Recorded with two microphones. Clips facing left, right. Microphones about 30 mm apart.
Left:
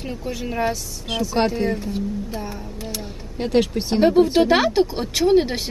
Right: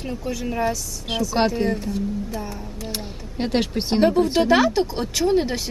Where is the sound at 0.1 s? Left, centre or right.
Centre.